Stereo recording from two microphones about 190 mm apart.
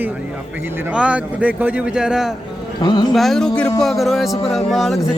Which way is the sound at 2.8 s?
20° left (ahead or behind).